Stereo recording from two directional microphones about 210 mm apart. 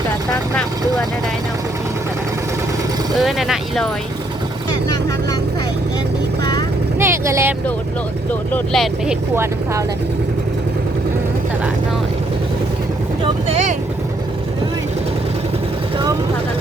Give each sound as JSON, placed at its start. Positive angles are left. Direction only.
{"t": 3.2, "sound": "speech", "side_deg": 0}
{"t": 6.4, "sound": "vehicle", "side_deg": 20}
{"t": 7.0, "sound": "vehicle", "side_deg": -15}
{"t": 8.3, "sound": "speech", "side_deg": 5}
{"t": 9.3, "sound": "speech", "side_deg": -10}
{"t": 13.2, "sound": "speech", "side_deg": -30}